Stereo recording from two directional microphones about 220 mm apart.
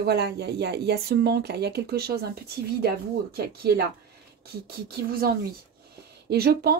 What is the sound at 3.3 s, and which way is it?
Speech, 45° right (ahead or behind).